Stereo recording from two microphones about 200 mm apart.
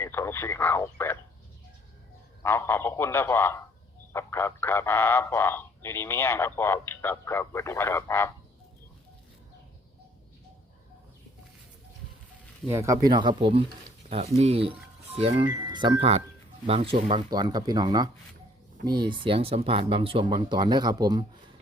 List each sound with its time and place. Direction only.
0.0 s radio: 10° left (ahead or behind)
2.4 s speech: 10° left (ahead or behind)
12.6 s speech: 15° right (ahead or behind)